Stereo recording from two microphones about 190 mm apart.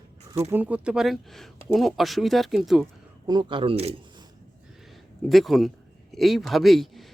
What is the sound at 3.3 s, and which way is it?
Speech, 25° right (ahead or behind).